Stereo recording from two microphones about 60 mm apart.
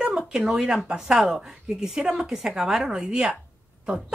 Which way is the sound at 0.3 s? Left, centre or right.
Centre.